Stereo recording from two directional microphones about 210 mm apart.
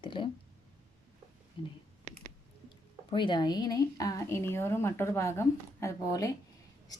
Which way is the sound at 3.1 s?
20° left (ahead or behind).